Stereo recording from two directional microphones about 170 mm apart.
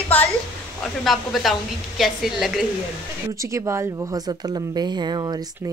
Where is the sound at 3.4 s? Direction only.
15° right (ahead or behind).